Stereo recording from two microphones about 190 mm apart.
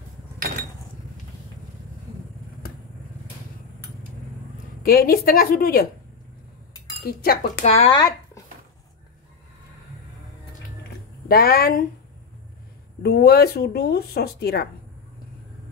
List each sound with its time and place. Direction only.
4.8 s a woman's voice: 50° left (ahead or behind)
7.0 s speech: 55° left (ahead or behind)
7.6 s speech: 35° left (ahead or behind)
7.9 s a sound: 20° left (ahead or behind)
11.2 s a woman's voice: 50° left (ahead or behind)
13.0 s speech: 55° left (ahead or behind)